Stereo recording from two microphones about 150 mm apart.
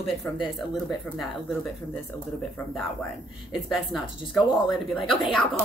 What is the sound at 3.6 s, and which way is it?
A woman's voice, centre (ahead or behind).